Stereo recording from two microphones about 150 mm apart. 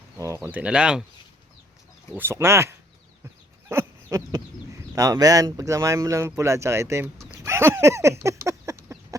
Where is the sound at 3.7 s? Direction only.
20° right (ahead or behind).